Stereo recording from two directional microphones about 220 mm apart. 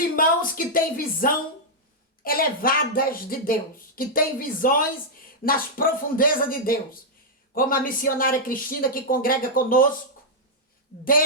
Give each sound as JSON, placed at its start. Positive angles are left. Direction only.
{"t": 0.2, "sound": "speech", "side_deg": 40}